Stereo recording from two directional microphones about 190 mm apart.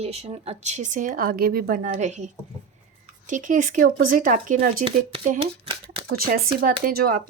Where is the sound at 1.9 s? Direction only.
40° right (ahead or behind).